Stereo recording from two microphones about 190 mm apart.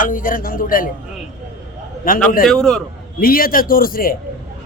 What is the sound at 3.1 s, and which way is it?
A man's voice, 50° left (ahead or behind).